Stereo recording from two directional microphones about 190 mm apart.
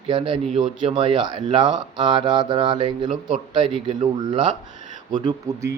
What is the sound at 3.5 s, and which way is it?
Speech, 25° right (ahead or behind).